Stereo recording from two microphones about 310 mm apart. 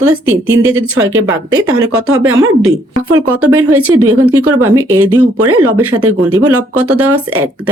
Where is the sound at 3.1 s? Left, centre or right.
Right.